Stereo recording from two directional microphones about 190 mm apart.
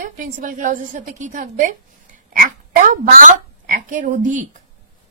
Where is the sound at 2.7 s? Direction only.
40° right (ahead or behind).